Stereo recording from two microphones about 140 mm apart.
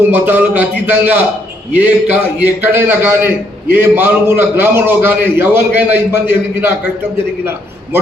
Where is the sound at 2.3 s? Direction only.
15° right (ahead or behind).